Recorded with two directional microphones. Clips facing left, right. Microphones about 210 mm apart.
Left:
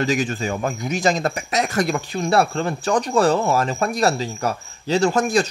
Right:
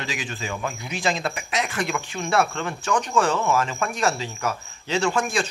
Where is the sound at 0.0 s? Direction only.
45° left (ahead or behind).